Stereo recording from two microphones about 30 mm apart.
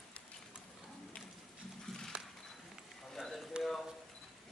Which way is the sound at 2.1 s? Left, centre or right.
Right.